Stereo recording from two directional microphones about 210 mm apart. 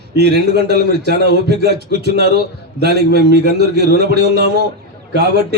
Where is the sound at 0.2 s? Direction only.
50° right (ahead or behind).